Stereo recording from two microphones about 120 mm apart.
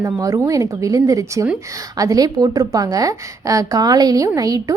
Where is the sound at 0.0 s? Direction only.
25° right (ahead or behind).